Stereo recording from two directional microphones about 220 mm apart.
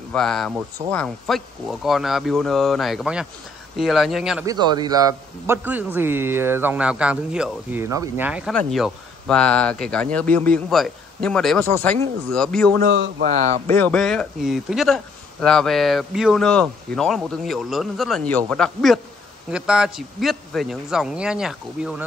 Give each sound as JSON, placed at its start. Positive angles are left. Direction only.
{"t": 0.1, "sound": "speech", "side_deg": 0}
{"t": 4.5, "sound": "a man's voice", "side_deg": -20}
{"t": 12.8, "sound": "speech", "side_deg": -45}
{"t": 13.7, "sound": "speech", "side_deg": 5}